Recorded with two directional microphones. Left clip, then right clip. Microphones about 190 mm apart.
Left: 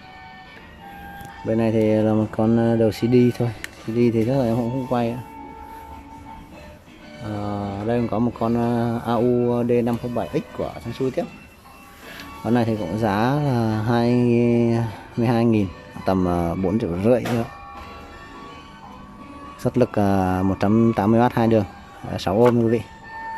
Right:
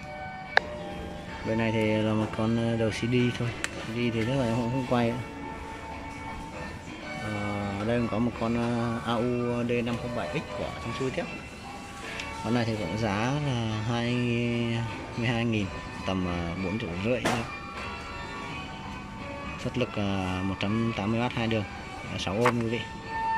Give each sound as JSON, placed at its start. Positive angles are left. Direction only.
{"t": 1.5, "sound": "speech", "side_deg": 20}
{"t": 7.4, "sound": "speech", "side_deg": 20}
{"t": 12.4, "sound": "speech", "side_deg": 15}
{"t": 19.6, "sound": "speech", "side_deg": 25}